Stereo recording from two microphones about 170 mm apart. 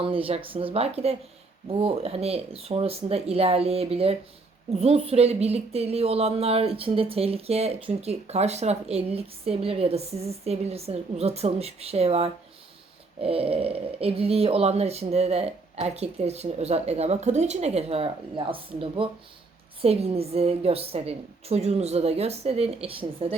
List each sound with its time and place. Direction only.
0.0 s speech: 30° right (ahead or behind)